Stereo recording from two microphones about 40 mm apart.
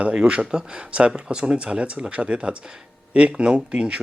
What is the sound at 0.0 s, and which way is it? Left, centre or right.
Speech, right.